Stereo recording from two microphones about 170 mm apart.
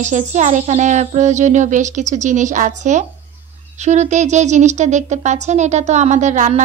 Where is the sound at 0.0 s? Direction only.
45° right (ahead or behind).